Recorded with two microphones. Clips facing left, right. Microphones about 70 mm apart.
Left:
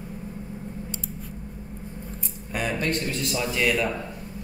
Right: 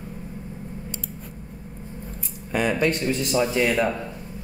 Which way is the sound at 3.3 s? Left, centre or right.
Right.